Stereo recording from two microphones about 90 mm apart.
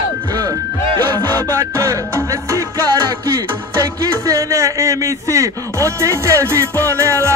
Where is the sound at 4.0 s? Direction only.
35° right (ahead or behind).